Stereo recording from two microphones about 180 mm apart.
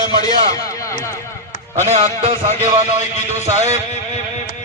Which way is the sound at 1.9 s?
35° right (ahead or behind).